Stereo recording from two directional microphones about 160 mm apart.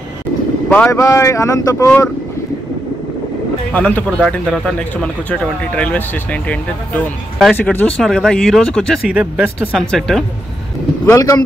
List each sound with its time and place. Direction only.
0.7 s speech: 10° left (ahead or behind)
0.9 s speech: 20° left (ahead or behind)
3.7 s speech: 5° left (ahead or behind)
11.1 s speech: 20° left (ahead or behind)